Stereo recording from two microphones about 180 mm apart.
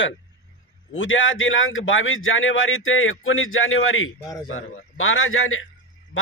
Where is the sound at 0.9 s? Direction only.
90° left.